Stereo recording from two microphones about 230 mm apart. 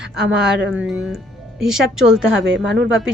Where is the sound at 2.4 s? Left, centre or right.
Right.